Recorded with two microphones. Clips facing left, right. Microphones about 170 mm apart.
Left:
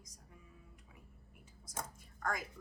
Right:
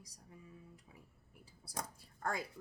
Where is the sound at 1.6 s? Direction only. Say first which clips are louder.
Right 1 dB; 35° right (ahead or behind).